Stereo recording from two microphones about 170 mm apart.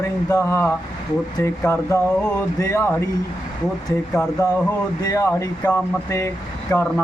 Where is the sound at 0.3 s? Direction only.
15° left (ahead or behind).